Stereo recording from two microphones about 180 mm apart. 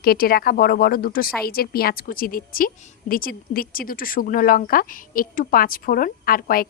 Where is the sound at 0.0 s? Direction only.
55° left (ahead or behind).